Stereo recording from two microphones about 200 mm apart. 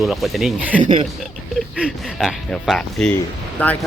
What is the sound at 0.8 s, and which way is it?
Speech, 35° right (ahead or behind).